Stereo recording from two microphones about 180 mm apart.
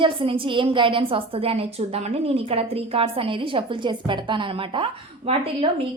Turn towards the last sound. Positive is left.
turn(degrees=-30)  # may be behind; listen again after turning